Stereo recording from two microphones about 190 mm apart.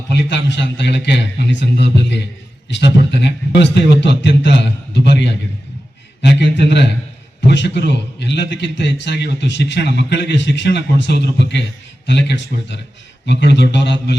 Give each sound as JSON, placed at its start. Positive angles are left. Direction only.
{"t": 0.2, "sound": "a man's voice", "side_deg": 65}
{"t": 6.2, "sound": "a man's voice", "side_deg": 65}